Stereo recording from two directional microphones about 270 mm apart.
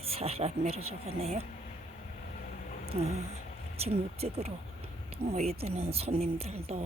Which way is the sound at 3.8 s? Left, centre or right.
Right.